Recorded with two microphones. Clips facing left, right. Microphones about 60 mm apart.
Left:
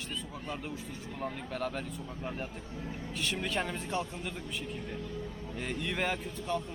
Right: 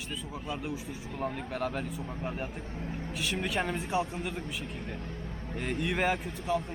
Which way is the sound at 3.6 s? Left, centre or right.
Centre.